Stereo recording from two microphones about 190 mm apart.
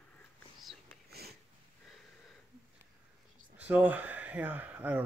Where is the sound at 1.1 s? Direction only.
55° right (ahead or behind).